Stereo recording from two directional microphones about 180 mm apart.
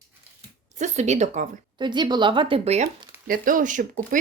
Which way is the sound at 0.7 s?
40° right (ahead or behind).